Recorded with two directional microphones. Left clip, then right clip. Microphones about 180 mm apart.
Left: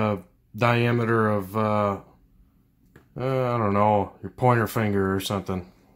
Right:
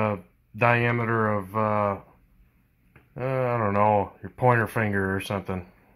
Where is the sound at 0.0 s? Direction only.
20° left (ahead or behind).